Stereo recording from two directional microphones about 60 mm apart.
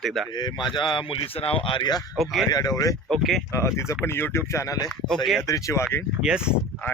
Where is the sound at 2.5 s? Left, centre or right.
Left.